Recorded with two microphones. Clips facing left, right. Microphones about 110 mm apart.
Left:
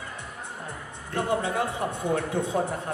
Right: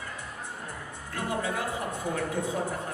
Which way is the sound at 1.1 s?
25° left (ahead or behind).